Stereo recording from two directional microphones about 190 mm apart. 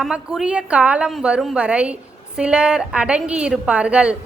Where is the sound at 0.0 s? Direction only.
5° right (ahead or behind).